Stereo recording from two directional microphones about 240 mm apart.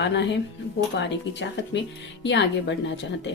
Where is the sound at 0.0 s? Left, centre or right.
Left.